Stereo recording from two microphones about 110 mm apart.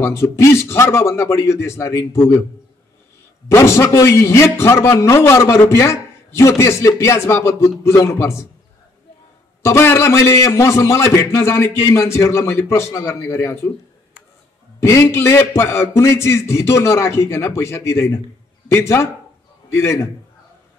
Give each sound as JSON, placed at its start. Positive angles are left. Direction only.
{"t": 0.0, "sound": "a man's voice", "side_deg": 25}
{"t": 3.4, "sound": "a man's voice", "side_deg": 25}
{"t": 9.6, "sound": "a man's voice", "side_deg": 25}
{"t": 14.8, "sound": "a man's voice", "side_deg": 25}